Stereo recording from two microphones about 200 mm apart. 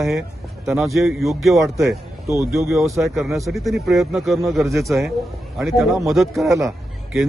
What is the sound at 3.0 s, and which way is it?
A man's voice, centre (ahead or behind).